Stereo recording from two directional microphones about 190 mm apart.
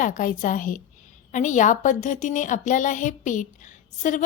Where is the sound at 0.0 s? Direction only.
45° left (ahead or behind).